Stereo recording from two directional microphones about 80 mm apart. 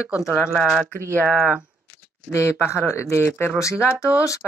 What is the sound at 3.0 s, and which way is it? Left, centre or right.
Speech, left.